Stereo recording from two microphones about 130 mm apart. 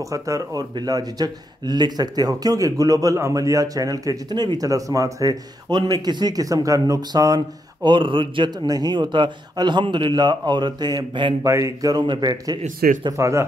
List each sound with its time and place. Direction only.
0.0 s speech: 25° right (ahead or behind)
11.4 s speech: 25° right (ahead or behind)